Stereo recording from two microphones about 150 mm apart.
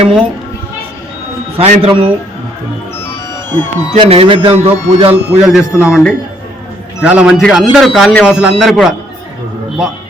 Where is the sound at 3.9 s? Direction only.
40° right (ahead or behind).